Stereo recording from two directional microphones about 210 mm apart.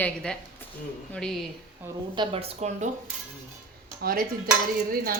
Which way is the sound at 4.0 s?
45° right (ahead or behind).